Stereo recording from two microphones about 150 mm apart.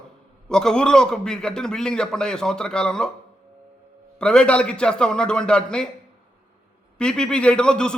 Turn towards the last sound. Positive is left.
turn(degrees=5)  # may be behind; listen again after turning